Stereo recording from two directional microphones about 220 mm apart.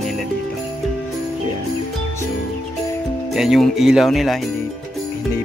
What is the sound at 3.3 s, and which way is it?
Speech, centre (ahead or behind).